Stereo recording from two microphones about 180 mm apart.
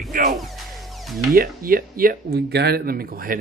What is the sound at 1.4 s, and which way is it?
Speech, 55° right (ahead or behind).